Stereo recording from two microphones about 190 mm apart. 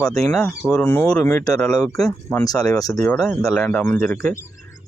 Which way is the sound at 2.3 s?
15° left (ahead or behind).